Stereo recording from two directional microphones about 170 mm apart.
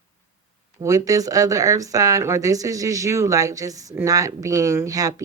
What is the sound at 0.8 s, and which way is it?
Speech, 20° right (ahead or behind).